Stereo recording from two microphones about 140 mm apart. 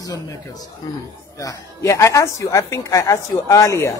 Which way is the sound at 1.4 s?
25° left (ahead or behind).